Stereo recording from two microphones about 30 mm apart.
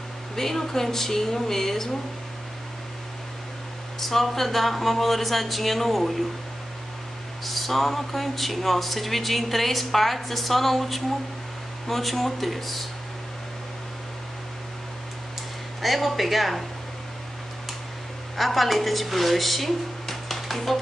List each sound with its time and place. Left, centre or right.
0.4 s a woman's voice: centre
4.0 s speech: centre
7.4 s speech: centre
15.8 s speech: centre
18.3 s a woman's voice: centre